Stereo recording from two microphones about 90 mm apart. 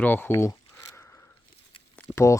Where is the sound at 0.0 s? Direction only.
20° left (ahead or behind).